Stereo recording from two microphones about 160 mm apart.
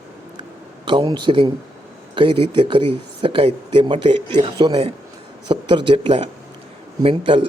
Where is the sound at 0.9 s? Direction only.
30° right (ahead or behind).